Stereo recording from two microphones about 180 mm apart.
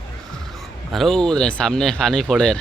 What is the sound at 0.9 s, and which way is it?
Speech, centre (ahead or behind).